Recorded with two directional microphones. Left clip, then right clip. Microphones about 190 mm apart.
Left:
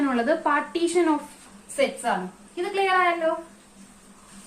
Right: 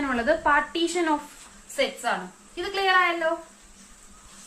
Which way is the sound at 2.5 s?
30° right (ahead or behind).